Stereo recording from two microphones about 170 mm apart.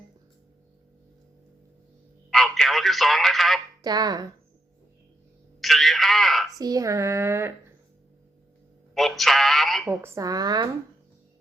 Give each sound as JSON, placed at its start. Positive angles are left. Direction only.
{"t": 2.3, "sound": "speech", "side_deg": 0}
{"t": 3.8, "sound": "speech", "side_deg": -25}
{"t": 5.5, "sound": "a sound", "side_deg": 0}
{"t": 6.5, "sound": "speech", "side_deg": -20}
{"t": 9.0, "sound": "speech", "side_deg": 0}
{"t": 9.9, "sound": "speech", "side_deg": -15}